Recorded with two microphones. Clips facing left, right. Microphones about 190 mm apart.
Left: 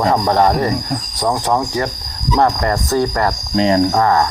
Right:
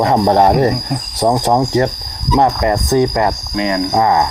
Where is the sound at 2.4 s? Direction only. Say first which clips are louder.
Right 2 dB; 15° right (ahead or behind).